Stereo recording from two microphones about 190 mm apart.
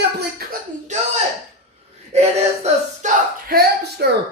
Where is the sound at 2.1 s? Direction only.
35° right (ahead or behind).